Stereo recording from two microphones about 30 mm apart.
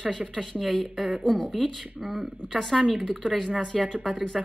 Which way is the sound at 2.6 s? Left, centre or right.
Centre.